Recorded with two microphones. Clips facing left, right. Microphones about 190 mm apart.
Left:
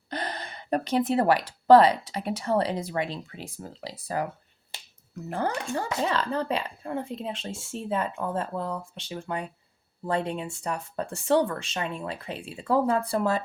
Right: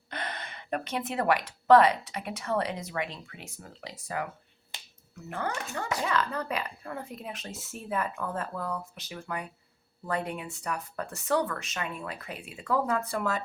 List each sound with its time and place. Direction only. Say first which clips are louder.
0.1 s speech: left 5 dB; 35° left (ahead or behind)
5.3 s speech: left 5 dB; 35° left (ahead or behind)